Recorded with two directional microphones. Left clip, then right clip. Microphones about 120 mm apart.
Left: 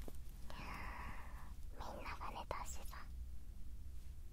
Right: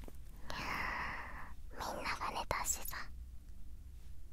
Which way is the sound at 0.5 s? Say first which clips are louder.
Right 11 dB; 30° right (ahead or behind).